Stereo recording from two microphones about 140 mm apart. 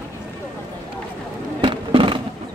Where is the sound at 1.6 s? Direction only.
35° right (ahead or behind).